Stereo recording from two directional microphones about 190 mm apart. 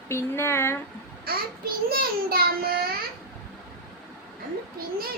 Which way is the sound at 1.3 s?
55° right (ahead or behind).